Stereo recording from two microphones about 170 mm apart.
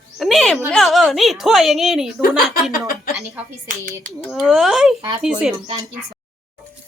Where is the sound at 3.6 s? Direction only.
50° right (ahead or behind).